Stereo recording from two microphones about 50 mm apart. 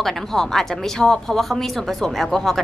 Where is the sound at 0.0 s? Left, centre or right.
Centre.